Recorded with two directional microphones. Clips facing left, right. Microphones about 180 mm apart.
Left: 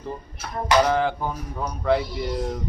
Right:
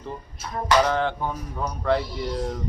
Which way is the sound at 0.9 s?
5° left (ahead or behind).